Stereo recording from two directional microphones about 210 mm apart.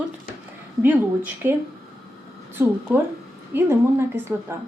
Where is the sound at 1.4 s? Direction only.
10° right (ahead or behind).